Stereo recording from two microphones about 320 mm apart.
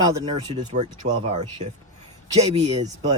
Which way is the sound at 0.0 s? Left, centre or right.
Centre.